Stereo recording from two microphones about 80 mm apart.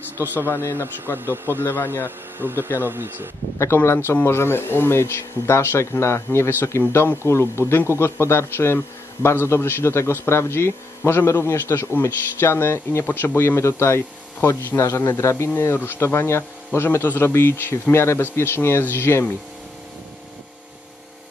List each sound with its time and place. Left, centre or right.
0.2 s speech: right
0.7 s a man's voice: left
1.1 s speech: right
1.6 s a man's voice: left
2.0 s speech: right
3.5 s a man's voice: left